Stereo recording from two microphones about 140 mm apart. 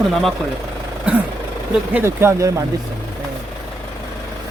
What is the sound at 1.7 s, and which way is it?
Speech, 10° right (ahead or behind).